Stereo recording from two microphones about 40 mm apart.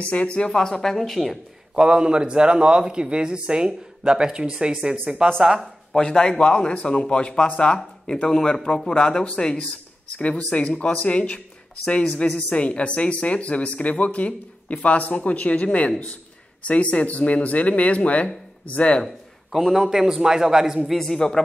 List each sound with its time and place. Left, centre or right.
0.0 s speech: left
0.5 s a woman's voice: centre
1.8 s speech: right
5.0 s speech: right
5.4 s a man's voice: centre
5.9 s a man's voice: centre; by 18.9 s left
19.7 s a man's voice: centre
20.9 s a woman's voice: centre